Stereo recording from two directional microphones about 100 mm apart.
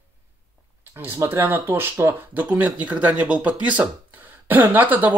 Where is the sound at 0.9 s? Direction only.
25° right (ahead or behind).